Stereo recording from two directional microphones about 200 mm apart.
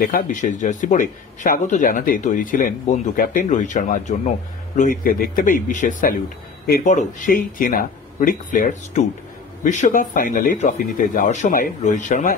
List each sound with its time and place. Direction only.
0.0 s speech: 45° left (ahead or behind)